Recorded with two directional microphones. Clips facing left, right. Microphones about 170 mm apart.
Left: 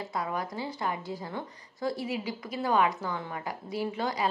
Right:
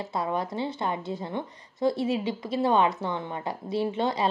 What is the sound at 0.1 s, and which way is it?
A woman's voice, 25° right (ahead or behind).